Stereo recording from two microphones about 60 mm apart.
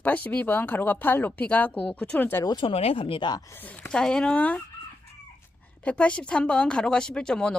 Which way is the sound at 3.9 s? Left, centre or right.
Centre.